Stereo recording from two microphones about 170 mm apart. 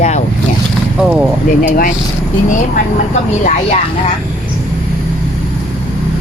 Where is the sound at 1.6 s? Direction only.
55° left (ahead or behind).